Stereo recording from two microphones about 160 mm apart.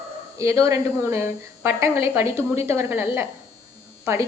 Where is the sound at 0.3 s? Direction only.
20° right (ahead or behind).